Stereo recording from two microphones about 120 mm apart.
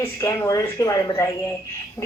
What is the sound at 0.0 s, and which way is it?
Speech, 20° left (ahead or behind).